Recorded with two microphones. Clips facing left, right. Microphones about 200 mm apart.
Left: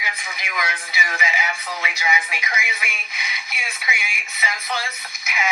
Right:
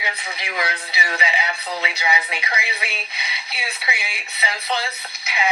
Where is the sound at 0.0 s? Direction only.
35° right (ahead or behind).